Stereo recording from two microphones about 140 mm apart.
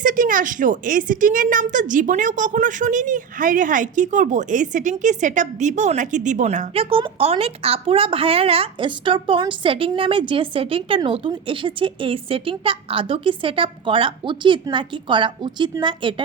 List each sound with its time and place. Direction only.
0.0 s a woman's voice: 75° right (ahead or behind); by 6.7 s 60° right (ahead or behind)
6.7 s a woman's voice: 40° right (ahead or behind)